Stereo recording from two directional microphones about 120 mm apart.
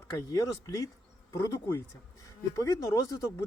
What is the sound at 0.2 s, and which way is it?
A man's voice, 30° left (ahead or behind).